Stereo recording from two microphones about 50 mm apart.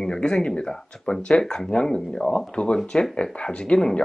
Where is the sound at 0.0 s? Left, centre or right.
Centre.